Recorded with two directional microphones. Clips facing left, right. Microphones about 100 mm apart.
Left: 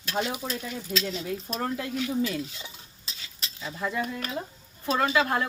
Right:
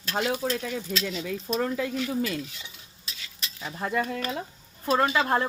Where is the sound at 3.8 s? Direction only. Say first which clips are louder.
Right 2 dB; 55° right (ahead or behind).